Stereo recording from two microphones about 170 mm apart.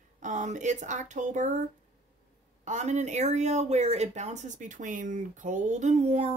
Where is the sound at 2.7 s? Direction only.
45° right (ahead or behind).